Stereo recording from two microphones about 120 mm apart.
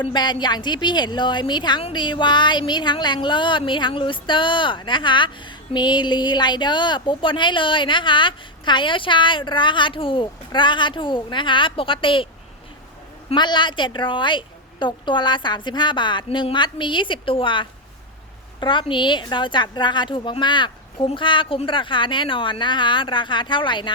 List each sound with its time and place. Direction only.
0.1 s speech: 40° left (ahead or behind)
13.3 s speech: 40° left (ahead or behind)